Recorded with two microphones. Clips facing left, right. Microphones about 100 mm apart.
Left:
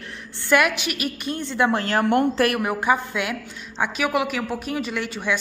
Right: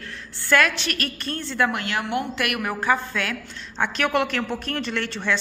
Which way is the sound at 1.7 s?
40° left (ahead or behind).